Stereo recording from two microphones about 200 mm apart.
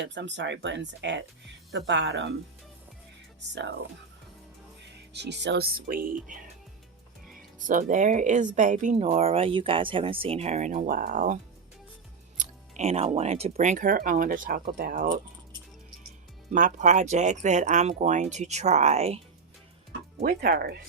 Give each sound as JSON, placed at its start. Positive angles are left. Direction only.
{"t": 0.0, "sound": "speech", "side_deg": -60}
{"t": 5.1, "sound": "speech", "side_deg": -60}
{"t": 7.3, "sound": "speech", "side_deg": -40}
{"t": 12.4, "sound": "music", "side_deg": -35}
{"t": 13.1, "sound": "speech", "side_deg": -30}
{"t": 16.5, "sound": "speech", "side_deg": -40}
{"t": 20.2, "sound": "speech", "side_deg": -50}